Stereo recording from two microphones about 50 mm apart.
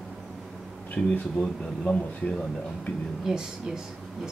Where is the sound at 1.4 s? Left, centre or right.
Left.